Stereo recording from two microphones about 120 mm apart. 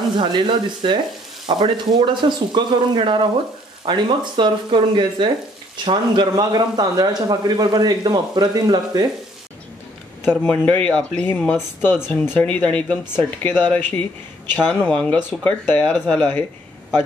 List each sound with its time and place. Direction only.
0.2 s speech: 40° right (ahead or behind)
10.4 s speech: 15° left (ahead or behind)